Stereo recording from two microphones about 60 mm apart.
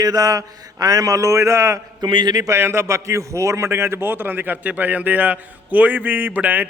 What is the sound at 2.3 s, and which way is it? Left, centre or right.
Speech, right.